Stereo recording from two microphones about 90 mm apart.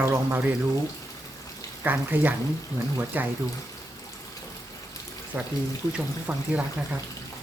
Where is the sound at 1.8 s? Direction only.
20° right (ahead or behind).